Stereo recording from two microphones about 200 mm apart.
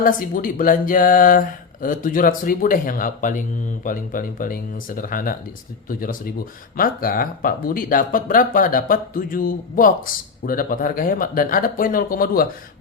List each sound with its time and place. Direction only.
0.0 s speech: 45° left (ahead or behind)